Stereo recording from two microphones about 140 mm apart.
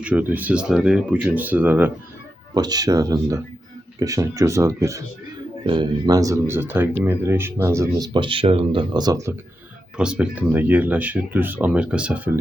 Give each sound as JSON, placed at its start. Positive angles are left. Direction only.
{"t": 0.0, "sound": "speech", "side_deg": -10}
{"t": 2.6, "sound": "speech", "side_deg": -30}
{"t": 5.6, "sound": "speech", "side_deg": -35}
{"t": 10.0, "sound": "speech", "side_deg": -10}